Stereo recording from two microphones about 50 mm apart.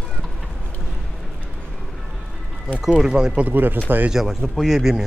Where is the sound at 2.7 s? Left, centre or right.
Centre.